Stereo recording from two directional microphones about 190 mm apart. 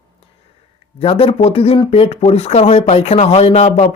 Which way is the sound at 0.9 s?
30° left (ahead or behind).